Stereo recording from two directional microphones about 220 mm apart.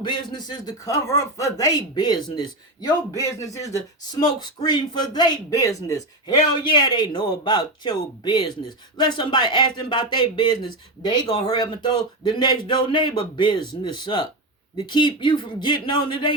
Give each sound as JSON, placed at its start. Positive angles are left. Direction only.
{"t": 0.0, "sound": "speech", "side_deg": 20}